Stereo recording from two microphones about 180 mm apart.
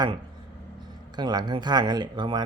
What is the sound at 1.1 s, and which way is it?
Speech, 25° right (ahead or behind).